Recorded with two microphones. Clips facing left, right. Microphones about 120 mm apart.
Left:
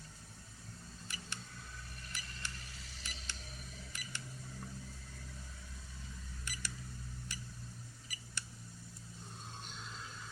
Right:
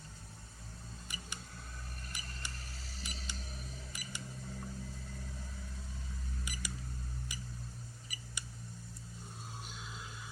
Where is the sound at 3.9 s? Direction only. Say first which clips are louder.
Right 1 dB; 10° right (ahead or behind).